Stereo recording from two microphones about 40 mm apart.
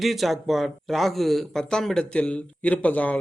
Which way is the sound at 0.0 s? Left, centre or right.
Centre.